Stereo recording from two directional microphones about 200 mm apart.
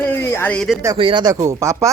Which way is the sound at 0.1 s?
10° left (ahead or behind).